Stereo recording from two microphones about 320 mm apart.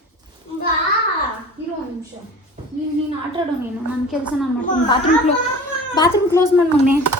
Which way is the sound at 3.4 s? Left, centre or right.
Centre.